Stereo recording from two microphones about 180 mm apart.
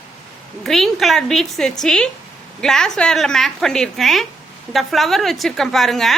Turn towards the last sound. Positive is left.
turn(degrees=0)  # may be behind; listen again after turning